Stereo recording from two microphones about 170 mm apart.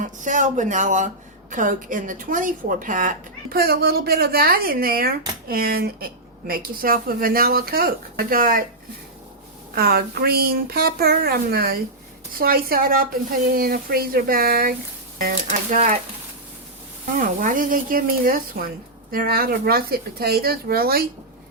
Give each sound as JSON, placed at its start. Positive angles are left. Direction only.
{"t": 0.2, "sound": "speech", "side_deg": -45}
{"t": 3.5, "sound": "speech", "side_deg": -65}
{"t": 9.7, "sound": "speech", "side_deg": -65}
{"t": 17.2, "sound": "speech", "side_deg": -50}